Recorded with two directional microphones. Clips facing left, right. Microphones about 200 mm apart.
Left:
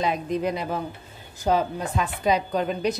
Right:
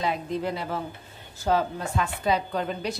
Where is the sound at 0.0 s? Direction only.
15° left (ahead or behind).